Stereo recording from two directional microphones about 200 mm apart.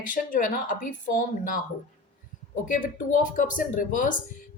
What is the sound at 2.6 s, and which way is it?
A woman's voice, 40° left (ahead or behind).